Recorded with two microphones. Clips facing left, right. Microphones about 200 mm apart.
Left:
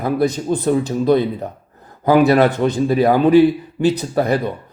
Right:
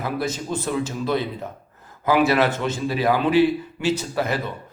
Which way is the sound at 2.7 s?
50° left (ahead or behind).